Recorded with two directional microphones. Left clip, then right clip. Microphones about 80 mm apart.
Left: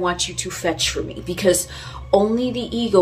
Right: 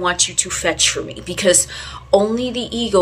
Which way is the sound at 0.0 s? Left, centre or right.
Left.